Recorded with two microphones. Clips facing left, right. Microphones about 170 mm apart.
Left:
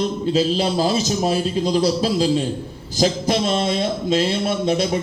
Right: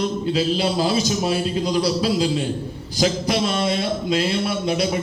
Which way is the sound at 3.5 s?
30° left (ahead or behind).